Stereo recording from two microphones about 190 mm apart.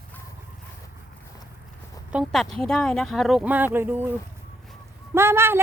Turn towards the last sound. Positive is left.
turn(degrees=-10)  # may be behind; listen again after turning